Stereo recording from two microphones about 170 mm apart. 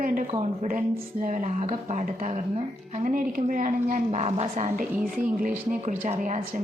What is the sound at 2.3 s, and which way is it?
Speech, 35° right (ahead or behind).